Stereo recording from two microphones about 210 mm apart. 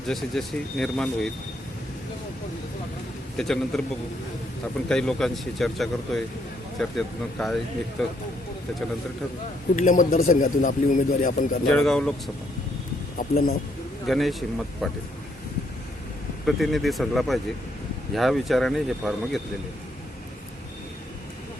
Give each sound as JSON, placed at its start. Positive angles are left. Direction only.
{"t": 0.1, "sound": "speech", "side_deg": 0}
{"t": 3.3, "sound": "speech", "side_deg": 0}
{"t": 4.9, "sound": "speech", "side_deg": 5}
{"t": 9.7, "sound": "a man's voice", "side_deg": 40}
{"t": 11.7, "sound": "speech", "side_deg": 5}
{"t": 13.1, "sound": "speech", "side_deg": 45}
{"t": 14.1, "sound": "speech", "side_deg": 0}
{"t": 16.5, "sound": "speech", "side_deg": 0}